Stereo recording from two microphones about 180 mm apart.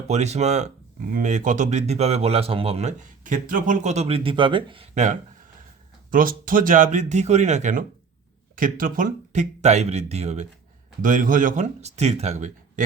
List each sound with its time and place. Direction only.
0.1 s speech: 40° right (ahead or behind)
6.1 s speech: 50° right (ahead or behind)
11.0 s speech: 45° right (ahead or behind)